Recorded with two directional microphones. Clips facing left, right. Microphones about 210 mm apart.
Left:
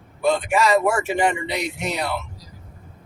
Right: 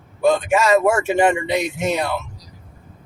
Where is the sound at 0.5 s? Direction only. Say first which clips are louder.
Right 3 dB; 45° right (ahead or behind).